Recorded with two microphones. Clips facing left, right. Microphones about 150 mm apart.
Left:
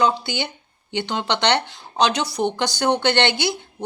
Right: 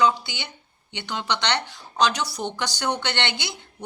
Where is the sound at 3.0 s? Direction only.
55° left (ahead or behind).